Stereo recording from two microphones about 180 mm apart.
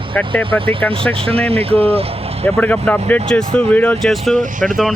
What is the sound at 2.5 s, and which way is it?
Speech, 10° left (ahead or behind).